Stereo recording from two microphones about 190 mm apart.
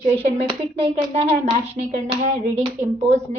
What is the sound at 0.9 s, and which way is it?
A woman's voice, 35° right (ahead or behind).